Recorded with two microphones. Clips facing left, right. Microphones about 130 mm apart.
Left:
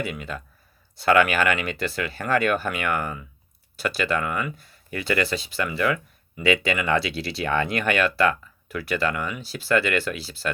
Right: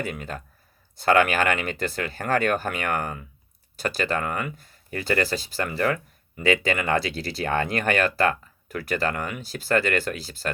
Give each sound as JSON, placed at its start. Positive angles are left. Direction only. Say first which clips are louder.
{"t": 0.0, "sound": "speech", "louder": "left 1 dB", "side_deg": -45}